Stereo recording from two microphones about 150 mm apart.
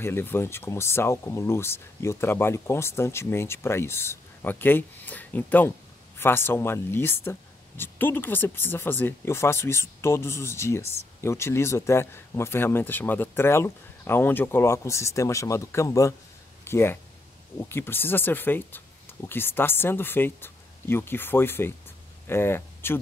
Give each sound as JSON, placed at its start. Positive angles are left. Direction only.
{"t": 0.0, "sound": "speech", "side_deg": 15}